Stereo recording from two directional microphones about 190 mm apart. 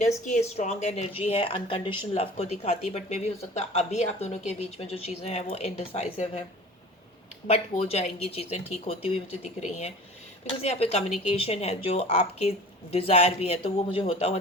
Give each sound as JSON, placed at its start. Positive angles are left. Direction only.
{"t": 0.3, "sound": "speech", "side_deg": 35}
{"t": 7.4, "sound": "speech", "side_deg": 30}